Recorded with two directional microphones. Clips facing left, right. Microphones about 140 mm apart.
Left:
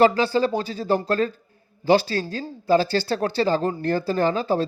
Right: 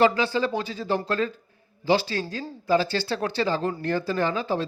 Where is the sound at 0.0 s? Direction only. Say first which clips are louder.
Left 3 dB; 35° left (ahead or behind).